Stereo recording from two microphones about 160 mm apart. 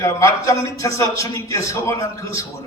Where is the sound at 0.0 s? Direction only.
20° left (ahead or behind).